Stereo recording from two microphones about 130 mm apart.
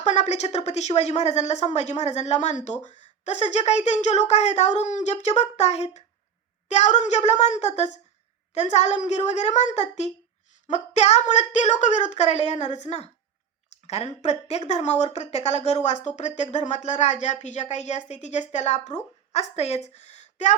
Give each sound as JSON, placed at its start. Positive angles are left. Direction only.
{"t": 0.0, "sound": "speech", "side_deg": 60}